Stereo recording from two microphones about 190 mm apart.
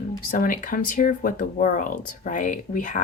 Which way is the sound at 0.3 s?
45° left (ahead or behind).